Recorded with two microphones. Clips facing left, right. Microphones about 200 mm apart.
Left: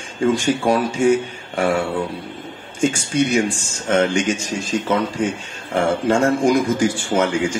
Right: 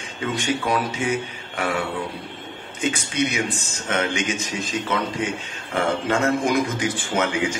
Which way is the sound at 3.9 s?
50° left (ahead or behind).